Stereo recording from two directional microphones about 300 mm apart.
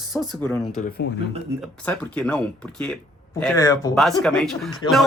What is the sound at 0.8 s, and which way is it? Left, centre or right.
Speech, left.